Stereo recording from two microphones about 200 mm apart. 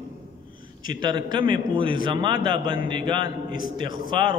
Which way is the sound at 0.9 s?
20° right (ahead or behind).